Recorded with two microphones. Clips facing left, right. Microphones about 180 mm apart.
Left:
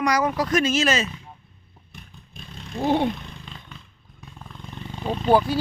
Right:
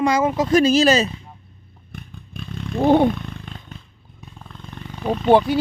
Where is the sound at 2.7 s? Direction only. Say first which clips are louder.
Right 6 dB; 55° right (ahead or behind).